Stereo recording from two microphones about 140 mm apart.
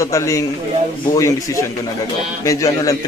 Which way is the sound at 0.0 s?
20° left (ahead or behind).